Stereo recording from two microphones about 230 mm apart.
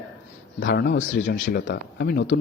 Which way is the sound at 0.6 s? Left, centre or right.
Left.